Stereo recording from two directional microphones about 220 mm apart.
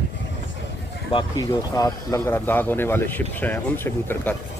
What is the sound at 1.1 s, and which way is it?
Speech, 15° left (ahead or behind).